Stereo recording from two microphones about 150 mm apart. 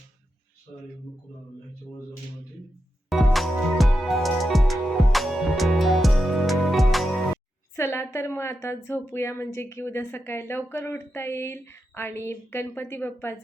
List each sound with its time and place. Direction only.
3.1 s music: centre (ahead or behind)
7.8 s a woman's voice: 15° left (ahead or behind)